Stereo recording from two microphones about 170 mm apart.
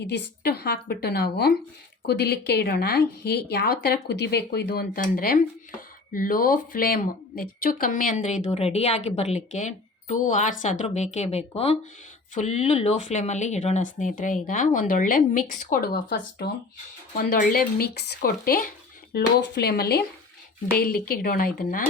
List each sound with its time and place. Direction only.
0.0 s speech: 80° left; by 8.4 s 45° left (ahead or behind)
8.4 s speech: 35° left (ahead or behind); by 16.0 s 55° left (ahead or behind)
17.2 s speech: 60° left (ahead or behind)
19.1 s speech: 80° left; by 21.8 s 55° left (ahead or behind)